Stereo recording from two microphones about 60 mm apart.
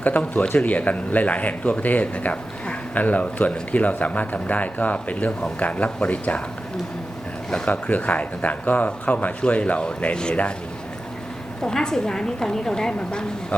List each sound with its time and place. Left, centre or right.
0.0 s speech: left
7.7 s speech: left
11.6 s a woman's voice: centre